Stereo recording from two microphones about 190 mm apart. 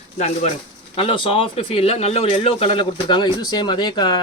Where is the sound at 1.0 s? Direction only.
30° left (ahead or behind).